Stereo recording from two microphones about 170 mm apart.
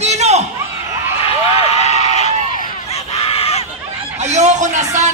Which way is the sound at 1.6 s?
40° left (ahead or behind).